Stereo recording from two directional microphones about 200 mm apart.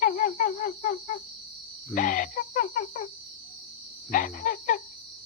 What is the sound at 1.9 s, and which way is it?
Cricket, 40° left (ahead or behind).